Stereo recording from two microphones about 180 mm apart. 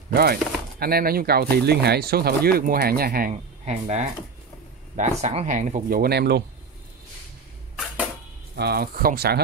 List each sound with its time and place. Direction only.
0.1 s speech: 60° right (ahead or behind)
3.6 s speech: 35° right (ahead or behind)
5.2 s speech: 40° right (ahead or behind); by 6.4 s 65° right (ahead or behind)
8.5 s speech: 60° right (ahead or behind)